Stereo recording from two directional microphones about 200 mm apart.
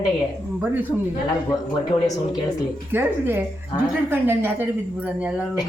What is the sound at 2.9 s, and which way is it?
Speech, 10° right (ahead or behind).